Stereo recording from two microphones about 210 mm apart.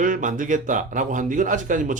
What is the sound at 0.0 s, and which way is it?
Speech, 40° right (ahead or behind).